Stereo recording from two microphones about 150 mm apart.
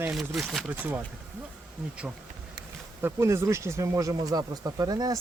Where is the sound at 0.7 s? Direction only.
10° right (ahead or behind).